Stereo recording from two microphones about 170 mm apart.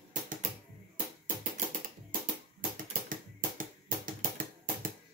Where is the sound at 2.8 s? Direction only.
50° right (ahead or behind).